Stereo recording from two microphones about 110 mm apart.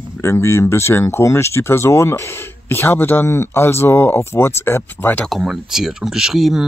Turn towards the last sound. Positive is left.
turn(degrees=-5)  # may be behind; listen again after turning